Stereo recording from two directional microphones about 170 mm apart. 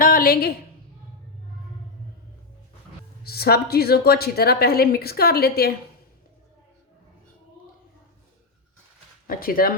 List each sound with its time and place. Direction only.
0.0 s a sound: 60° left (ahead or behind)
3.2 s a woman's voice: 65° left (ahead or behind)
9.2 s speech: 60° left (ahead or behind)